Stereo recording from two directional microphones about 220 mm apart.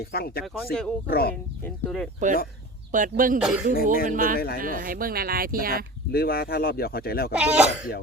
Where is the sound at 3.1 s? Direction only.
40° right (ahead or behind).